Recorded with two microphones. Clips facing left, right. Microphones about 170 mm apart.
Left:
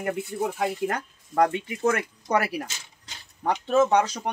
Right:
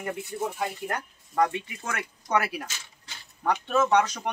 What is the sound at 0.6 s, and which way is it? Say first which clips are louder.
Speech: left 5 dB; 60° left (ahead or behind).